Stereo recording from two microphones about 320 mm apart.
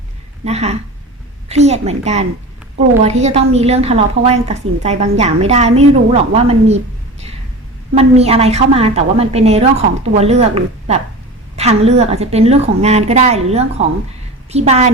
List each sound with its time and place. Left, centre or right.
0.4 s a woman's voice: centre
7.9 s a woman's voice: centre